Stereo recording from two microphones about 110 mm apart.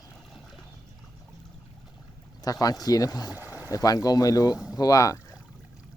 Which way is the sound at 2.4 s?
35° left (ahead or behind).